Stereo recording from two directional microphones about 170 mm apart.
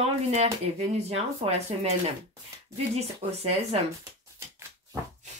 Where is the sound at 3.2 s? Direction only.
35° right (ahead or behind).